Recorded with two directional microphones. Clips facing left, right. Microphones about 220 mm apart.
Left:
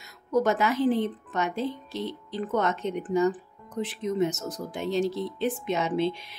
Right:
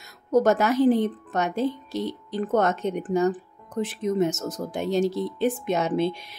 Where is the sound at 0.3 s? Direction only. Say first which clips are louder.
Right 4 dB; 45° right (ahead or behind).